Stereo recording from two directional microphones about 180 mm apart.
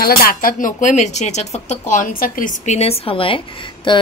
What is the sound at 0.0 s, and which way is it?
Speech, 55° left (ahead or behind).